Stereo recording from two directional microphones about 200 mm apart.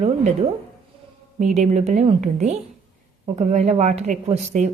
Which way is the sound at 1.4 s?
35° right (ahead or behind).